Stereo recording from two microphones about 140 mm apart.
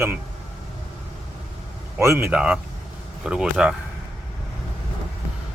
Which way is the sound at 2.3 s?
5° right (ahead or behind).